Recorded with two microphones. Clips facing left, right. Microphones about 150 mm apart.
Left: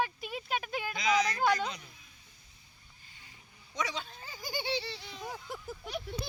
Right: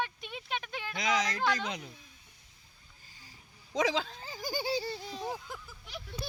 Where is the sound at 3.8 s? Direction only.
90° right.